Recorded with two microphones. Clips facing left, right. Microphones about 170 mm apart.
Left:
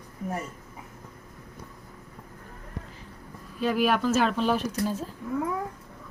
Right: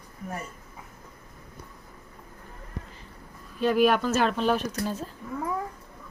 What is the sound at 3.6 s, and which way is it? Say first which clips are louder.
Speech: right 3 dB; 5° left (ahead or behind).